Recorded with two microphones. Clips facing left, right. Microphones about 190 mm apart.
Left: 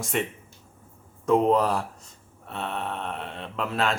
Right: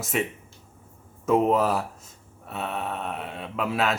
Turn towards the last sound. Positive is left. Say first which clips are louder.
# right 1 dB
turn(degrees=-5)  # may be behind; listen again after turning